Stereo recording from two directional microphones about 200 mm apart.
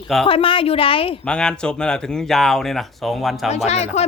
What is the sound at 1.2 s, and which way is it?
Speech, 5° left (ahead or behind).